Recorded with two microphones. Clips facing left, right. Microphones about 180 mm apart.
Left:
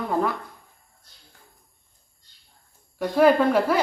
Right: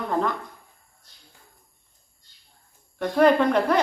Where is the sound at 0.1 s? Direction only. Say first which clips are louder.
Even; 5° left (ahead or behind).